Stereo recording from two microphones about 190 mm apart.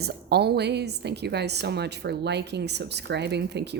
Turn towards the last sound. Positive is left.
turn(degrees=-60)  # may be behind; listen again after turning